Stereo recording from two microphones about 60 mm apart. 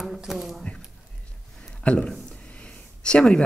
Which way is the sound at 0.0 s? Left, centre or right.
Centre.